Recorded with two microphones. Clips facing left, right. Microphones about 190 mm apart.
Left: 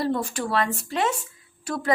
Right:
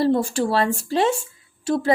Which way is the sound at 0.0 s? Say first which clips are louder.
Right 6 dB; 30° right (ahead or behind).